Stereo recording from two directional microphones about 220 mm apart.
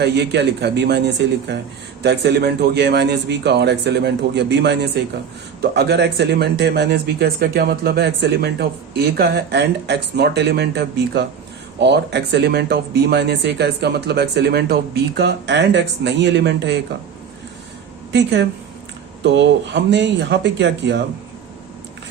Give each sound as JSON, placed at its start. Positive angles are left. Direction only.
{"t": 0.0, "sound": "speech", "side_deg": -50}
{"t": 18.1, "sound": "speech", "side_deg": -50}